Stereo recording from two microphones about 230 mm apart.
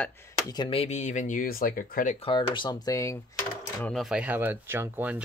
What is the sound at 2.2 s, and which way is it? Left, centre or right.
Speech, left.